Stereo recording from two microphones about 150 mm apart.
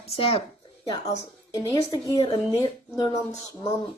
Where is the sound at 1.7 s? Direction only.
25° left (ahead or behind).